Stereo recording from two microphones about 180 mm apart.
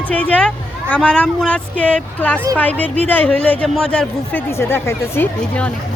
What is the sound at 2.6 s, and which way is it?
Speech, 10° left (ahead or behind).